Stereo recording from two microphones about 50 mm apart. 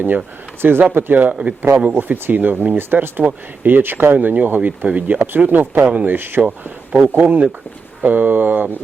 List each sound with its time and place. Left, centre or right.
0.6 s speech: right
1.3 s speech: right
2.0 s speech: right
3.2 s speech: right
6.1 s speech: right
7.2 s speech: right